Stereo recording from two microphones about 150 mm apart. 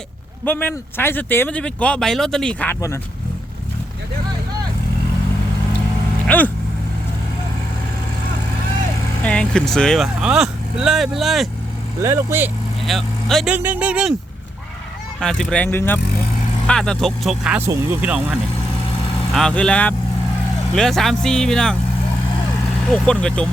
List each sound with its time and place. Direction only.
0.4 s speech: 10° left (ahead or behind)
6.2 s vehicle: 10° left (ahead or behind)
9.2 s speech: 5° left (ahead or behind)
12.0 s speech: 15° right (ahead or behind)
12.8 s speech: centre (ahead or behind)
13.5 s speech: 10° right (ahead or behind)
15.2 s speech: 5° left (ahead or behind)
17.6 s speech: 15° right (ahead or behind)
19.3 s speech: 5° left (ahead or behind)
23.0 s speech: 5° left (ahead or behind)